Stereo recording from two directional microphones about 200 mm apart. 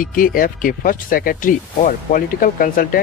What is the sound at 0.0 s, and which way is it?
Speech, 45° left (ahead or behind).